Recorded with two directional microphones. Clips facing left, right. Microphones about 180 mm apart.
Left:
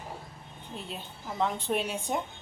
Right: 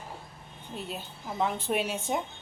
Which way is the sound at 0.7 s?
5° right (ahead or behind).